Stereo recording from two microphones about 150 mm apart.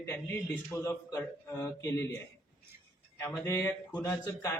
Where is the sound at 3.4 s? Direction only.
15° left (ahead or behind).